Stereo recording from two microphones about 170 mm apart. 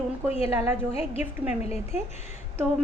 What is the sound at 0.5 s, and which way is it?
Speech, 15° right (ahead or behind).